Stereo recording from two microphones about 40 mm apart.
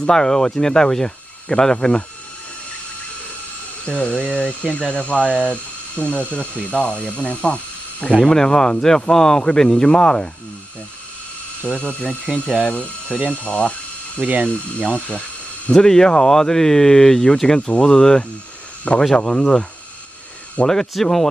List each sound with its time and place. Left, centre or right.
0.1 s speech: centre
3.8 s speech: left
8.2 s speech: centre
11.6 s speech: left
14.2 s speech: right
14.5 s speech: left
15.8 s speech: centre
17.6 s speech: left
17.8 s speech: centre
18.9 s speech: left
20.6 s speech: centre